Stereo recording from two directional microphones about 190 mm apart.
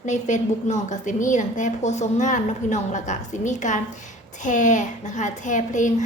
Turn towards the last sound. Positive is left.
turn(degrees=40)  # may be behind; listen again after turning